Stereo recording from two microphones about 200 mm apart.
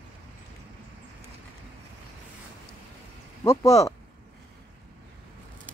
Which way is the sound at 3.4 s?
15° left (ahead or behind).